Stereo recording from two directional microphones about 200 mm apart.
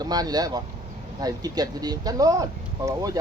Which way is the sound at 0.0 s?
20° right (ahead or behind).